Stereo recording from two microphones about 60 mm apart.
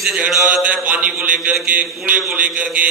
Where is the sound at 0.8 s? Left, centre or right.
Right.